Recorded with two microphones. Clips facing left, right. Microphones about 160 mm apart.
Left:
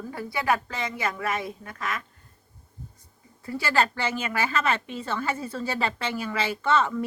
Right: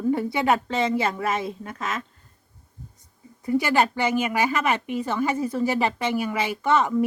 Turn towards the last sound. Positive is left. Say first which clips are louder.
# right 2 dB
turn(degrees=-15)  # may be behind; listen again after turning